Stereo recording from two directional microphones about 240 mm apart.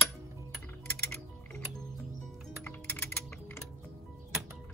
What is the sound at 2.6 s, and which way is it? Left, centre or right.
Typing, centre.